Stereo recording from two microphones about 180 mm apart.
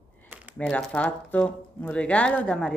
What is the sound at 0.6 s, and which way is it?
Speech, 5° left (ahead or behind).